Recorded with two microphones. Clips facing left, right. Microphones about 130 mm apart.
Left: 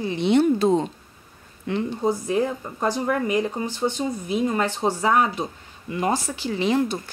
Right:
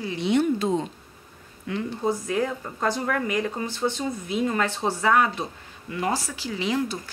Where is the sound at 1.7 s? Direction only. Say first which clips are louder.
Left 3 dB; 20° left (ahead or behind).